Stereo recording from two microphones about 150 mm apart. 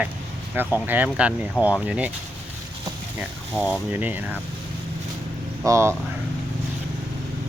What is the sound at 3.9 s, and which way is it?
Speech, 10° right (ahead or behind).